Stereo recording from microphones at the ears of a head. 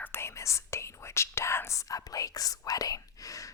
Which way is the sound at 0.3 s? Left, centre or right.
Left.